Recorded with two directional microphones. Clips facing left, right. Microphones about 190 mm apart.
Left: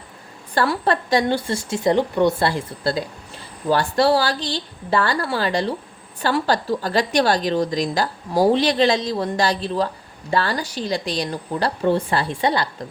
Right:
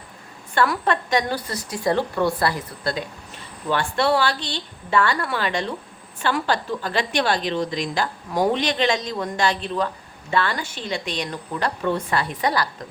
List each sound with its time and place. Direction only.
0.5 s a woman's voice: 35° left (ahead or behind)